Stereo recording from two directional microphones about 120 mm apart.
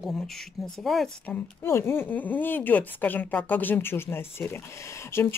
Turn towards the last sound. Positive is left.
turn(degrees=20)  # may be behind; listen again after turning